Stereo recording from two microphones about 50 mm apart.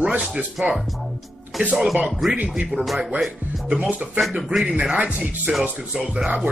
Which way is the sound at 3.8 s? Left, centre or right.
Right.